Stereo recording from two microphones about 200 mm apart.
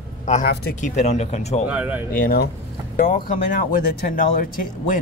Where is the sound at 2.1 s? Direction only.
50° left (ahead or behind).